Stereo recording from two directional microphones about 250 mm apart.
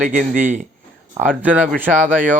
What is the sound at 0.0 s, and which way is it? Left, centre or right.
Speech, right.